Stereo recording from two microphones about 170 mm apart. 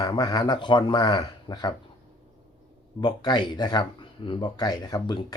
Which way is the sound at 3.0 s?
25° left (ahead or behind).